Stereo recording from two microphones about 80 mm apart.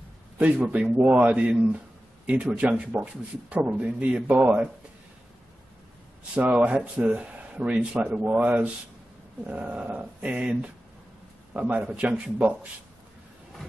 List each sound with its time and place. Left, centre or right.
0.4 s a man's voice: centre
6.3 s a man's voice: centre